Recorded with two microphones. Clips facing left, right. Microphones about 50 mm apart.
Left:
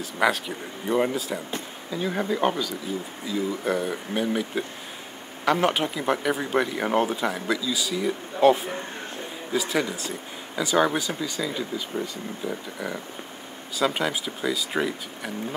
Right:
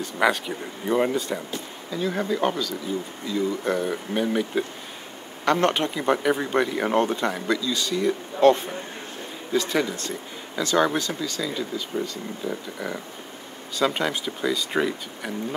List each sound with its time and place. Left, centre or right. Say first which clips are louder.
0.0 s speech: right 1 dB; centre
1.9 s speech: right 1 dB; centre
12.4 s speech: right 1 dB; centre